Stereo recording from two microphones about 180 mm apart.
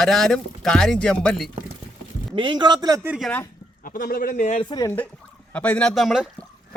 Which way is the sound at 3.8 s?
55° left (ahead or behind).